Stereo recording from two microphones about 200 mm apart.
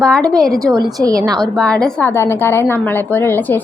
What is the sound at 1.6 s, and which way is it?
A woman's voice, 5° left (ahead or behind).